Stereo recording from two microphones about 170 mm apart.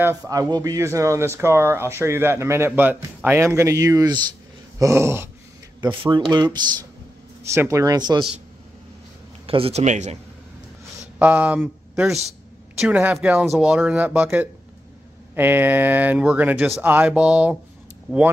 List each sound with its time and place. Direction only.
0.0 s speech: 15° right (ahead or behind)
5.8 s speech: 25° right (ahead or behind)
9.5 s a man's voice: 35° right (ahead or behind)
11.1 s speech: 10° right (ahead or behind)